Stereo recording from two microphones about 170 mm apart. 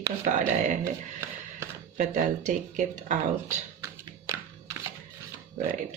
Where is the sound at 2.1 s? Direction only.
45° right (ahead or behind).